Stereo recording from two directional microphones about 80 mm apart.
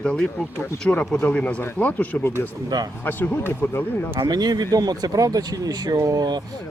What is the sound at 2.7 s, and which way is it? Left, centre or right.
Speech, right.